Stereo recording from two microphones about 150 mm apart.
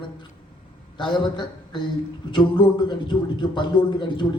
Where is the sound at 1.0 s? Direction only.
30° left (ahead or behind).